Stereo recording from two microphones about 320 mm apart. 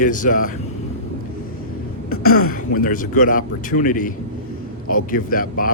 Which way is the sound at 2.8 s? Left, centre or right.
Left.